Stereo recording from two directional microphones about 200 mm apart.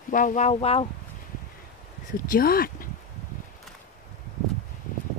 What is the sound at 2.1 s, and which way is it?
Speech, 45° left (ahead or behind).